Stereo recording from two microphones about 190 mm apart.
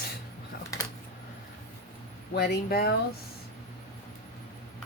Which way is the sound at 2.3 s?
55° left (ahead or behind).